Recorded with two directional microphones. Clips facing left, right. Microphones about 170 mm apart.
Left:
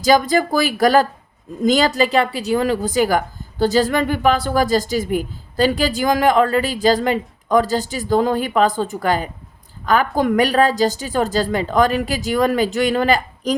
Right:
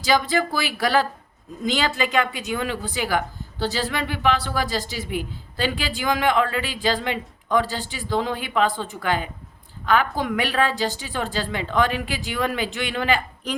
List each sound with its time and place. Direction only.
0.0 s a woman's voice: 45° left (ahead or behind)